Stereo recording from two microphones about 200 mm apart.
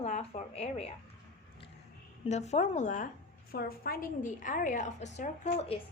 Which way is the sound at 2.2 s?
35° left (ahead or behind).